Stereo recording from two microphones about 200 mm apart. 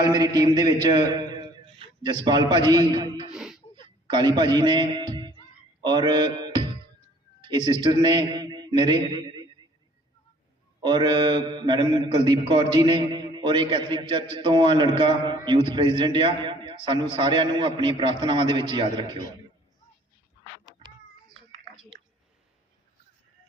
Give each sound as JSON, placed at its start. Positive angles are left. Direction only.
{"t": 0.0, "sound": "a man's voice", "side_deg": -20}
{"t": 3.3, "sound": "a sound", "side_deg": -5}
{"t": 4.0, "sound": "a man's voice", "side_deg": -20}
{"t": 5.8, "sound": "mantra", "side_deg": -20}
{"t": 7.4, "sound": "a man's voice", "side_deg": -25}
{"t": 10.8, "sound": "a man's voice", "side_deg": -20}